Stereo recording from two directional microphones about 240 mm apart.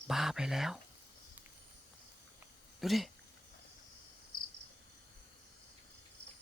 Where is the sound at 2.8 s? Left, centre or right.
Centre.